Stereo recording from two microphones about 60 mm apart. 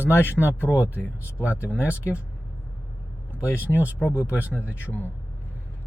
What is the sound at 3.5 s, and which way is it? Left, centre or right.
Speech, left.